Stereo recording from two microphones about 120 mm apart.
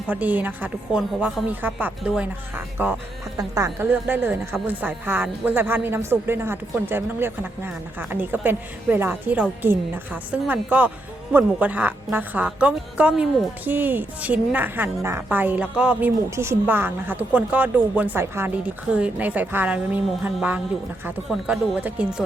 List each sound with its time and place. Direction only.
0.1 s speech: 15° right (ahead or behind)
3.3 s speech: 30° right (ahead or behind)
3.8 s speech: 15° right (ahead or behind)